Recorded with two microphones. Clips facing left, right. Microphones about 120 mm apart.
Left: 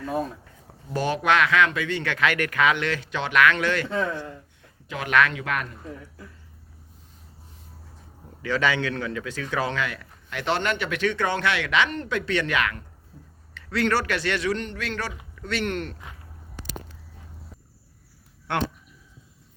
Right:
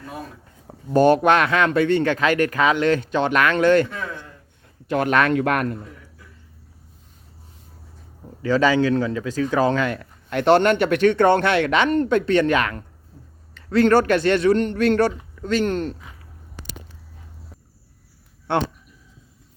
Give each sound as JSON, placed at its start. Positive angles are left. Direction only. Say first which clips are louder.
{"t": 0.9, "sound": "speech", "louder": "right 7 dB", "side_deg": -50}
{"t": 3.8, "sound": "a man's voice", "louder": "left 5 dB", "side_deg": 25}
{"t": 5.0, "sound": "speech", "louder": "right 3 dB", "side_deg": -45}
{"t": 8.4, "sound": "speech", "louder": "right 7 dB", "side_deg": -35}
{"t": 10.4, "sound": "speech", "louder": "right 10 dB", "side_deg": -55}
{"t": 15.4, "sound": "speech", "louder": "right 7 dB", "side_deg": -35}
{"t": 18.5, "sound": "speech", "louder": "right 5 dB", "side_deg": -30}